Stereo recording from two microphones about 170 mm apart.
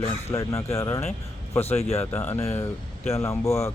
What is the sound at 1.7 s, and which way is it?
Speech, 40° left (ahead or behind).